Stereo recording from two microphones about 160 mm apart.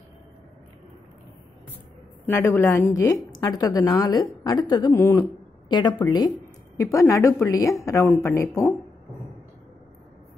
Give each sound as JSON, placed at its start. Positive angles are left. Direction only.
{"t": 2.2, "sound": "a woman's voice", "side_deg": 15}